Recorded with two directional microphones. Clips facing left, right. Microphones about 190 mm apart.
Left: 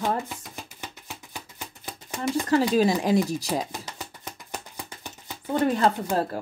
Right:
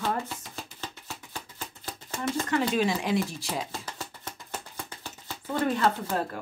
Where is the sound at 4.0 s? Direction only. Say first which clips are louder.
Left 1 dB; 15° left (ahead or behind).